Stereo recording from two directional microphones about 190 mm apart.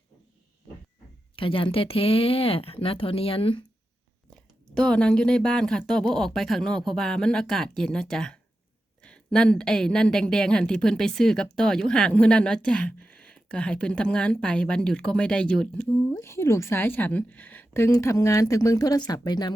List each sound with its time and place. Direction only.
1.4 s speech: 25° left (ahead or behind)
4.7 s a woman's voice: 5° left (ahead or behind); by 19.5 s 20° left (ahead or behind)